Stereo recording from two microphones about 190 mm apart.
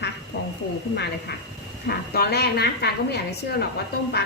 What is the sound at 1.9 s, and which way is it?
A woman's voice, 55° left (ahead or behind).